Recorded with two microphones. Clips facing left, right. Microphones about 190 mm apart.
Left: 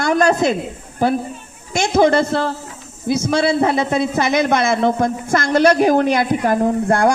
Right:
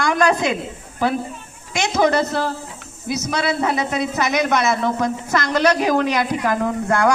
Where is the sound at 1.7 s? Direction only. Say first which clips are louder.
Left 5 dB; 45° left (ahead or behind).